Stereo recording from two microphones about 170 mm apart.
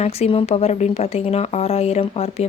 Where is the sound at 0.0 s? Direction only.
35° left (ahead or behind).